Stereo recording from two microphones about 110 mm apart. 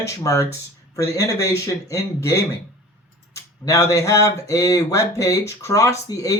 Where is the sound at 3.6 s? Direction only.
30° left (ahead or behind).